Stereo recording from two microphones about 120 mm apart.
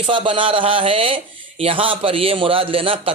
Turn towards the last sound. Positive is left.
turn(degrees=-50)  # may be behind; listen again after turning